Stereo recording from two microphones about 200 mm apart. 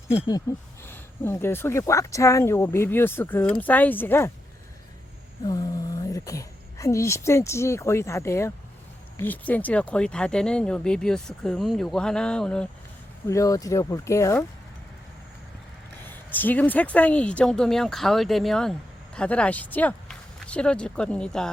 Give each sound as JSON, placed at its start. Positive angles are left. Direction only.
{"t": 0.3, "sound": "speech", "side_deg": 15}
{"t": 5.5, "sound": "speech", "side_deg": 20}
{"t": 13.2, "sound": "speech", "side_deg": 15}
{"t": 16.0, "sound": "speech", "side_deg": 10}